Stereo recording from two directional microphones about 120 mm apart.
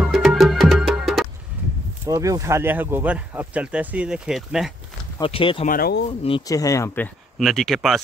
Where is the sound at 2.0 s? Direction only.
25° right (ahead or behind); by 4.7 s 5° right (ahead or behind).